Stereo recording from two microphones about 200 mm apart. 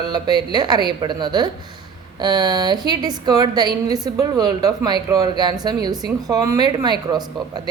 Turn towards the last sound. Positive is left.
turn(degrees=-20)  # may be behind; listen again after turning